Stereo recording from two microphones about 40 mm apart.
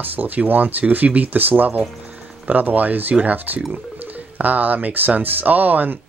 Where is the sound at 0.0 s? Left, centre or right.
Right.